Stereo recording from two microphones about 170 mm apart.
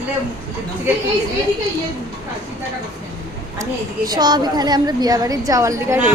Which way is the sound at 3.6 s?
25° right (ahead or behind).